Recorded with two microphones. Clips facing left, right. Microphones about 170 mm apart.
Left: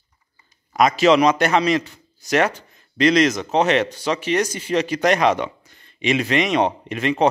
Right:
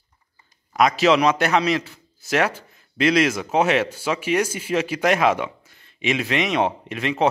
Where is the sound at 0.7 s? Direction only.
Centre (ahead or behind).